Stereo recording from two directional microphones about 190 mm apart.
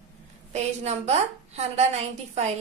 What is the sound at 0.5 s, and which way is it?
A woman's voice, 35° right (ahead or behind).